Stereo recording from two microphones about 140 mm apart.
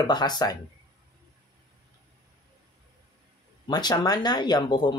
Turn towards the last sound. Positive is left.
turn(degrees=30)  # may be behind; listen again after turning